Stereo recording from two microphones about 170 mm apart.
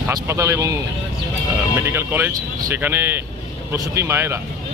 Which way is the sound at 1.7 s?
15° right (ahead or behind).